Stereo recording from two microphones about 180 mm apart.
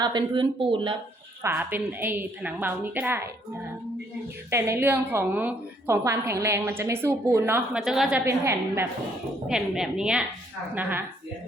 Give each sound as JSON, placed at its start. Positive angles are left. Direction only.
{"t": 0.0, "sound": "speech", "side_deg": -25}
{"t": 1.4, "sound": "a woman's voice", "side_deg": -15}
{"t": 4.5, "sound": "a woman's voice", "side_deg": -15}
{"t": 8.2, "sound": "a woman's voice", "side_deg": -15}
{"t": 9.5, "sound": "a woman's voice", "side_deg": -5}